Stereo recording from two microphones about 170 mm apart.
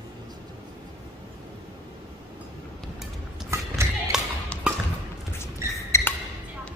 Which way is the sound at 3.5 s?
15° right (ahead or behind).